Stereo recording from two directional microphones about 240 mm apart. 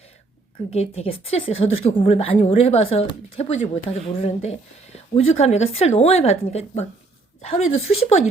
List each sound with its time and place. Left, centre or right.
0.7 s a woman's voice: left
7.9 s a woman's voice: left